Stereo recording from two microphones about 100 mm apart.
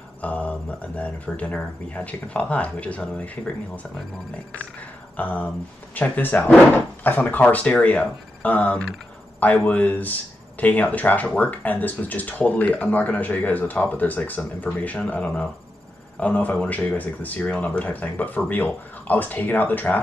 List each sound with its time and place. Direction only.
0.2 s speech: 15° left (ahead or behind)
5.1 s speech: 15° left (ahead or behind)